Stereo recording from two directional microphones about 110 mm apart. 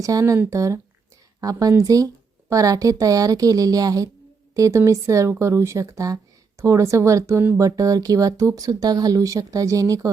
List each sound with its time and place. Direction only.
0.0 s a woman's voice: 30° right (ahead or behind)